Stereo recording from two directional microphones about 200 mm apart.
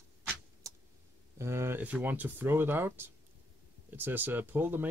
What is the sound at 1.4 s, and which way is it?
Speech, 15° right (ahead or behind).